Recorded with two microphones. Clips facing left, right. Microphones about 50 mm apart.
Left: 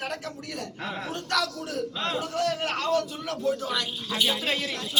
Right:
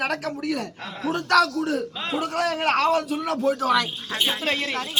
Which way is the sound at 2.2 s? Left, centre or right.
Right.